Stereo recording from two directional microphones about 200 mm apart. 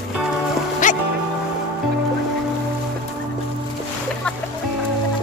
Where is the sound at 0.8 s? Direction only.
40° left (ahead or behind).